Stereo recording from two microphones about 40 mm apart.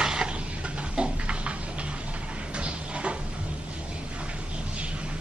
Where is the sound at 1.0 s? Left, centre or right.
Right.